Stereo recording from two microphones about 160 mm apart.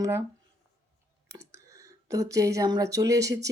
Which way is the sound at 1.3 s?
20° right (ahead or behind).